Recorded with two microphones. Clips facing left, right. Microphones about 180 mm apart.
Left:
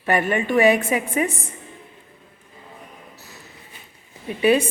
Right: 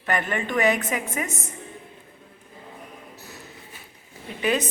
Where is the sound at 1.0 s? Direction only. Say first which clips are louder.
Left 7 dB; 30° left (ahead or behind).